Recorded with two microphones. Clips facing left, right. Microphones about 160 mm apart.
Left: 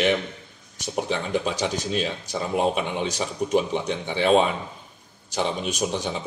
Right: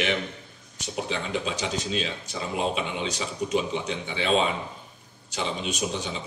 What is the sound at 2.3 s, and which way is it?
A man's voice, 50° left (ahead or behind).